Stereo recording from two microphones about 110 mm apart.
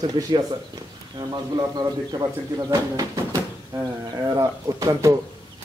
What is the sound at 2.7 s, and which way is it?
Speech, 30° right (ahead or behind).